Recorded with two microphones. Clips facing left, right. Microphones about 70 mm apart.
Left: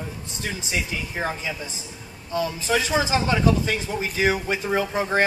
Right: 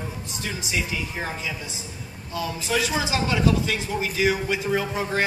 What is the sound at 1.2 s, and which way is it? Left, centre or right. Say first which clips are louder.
A man's voice: left 3 dB; left.